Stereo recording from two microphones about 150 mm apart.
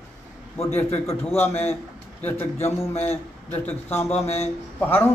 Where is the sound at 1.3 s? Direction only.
15° left (ahead or behind).